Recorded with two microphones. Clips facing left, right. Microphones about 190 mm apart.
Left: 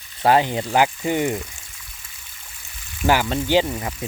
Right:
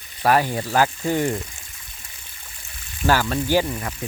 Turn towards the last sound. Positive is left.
turn(degrees=20)  # may be behind; listen again after turning